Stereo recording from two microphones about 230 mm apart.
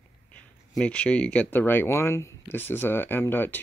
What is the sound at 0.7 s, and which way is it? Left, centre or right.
Speech, centre.